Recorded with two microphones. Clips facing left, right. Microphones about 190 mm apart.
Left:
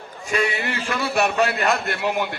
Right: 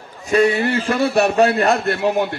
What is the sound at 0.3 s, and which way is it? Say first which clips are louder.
A man's voice: right 8 dB; 35° right (ahead or behind).